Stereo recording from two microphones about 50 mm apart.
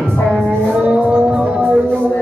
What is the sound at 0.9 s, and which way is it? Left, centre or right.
Music, centre.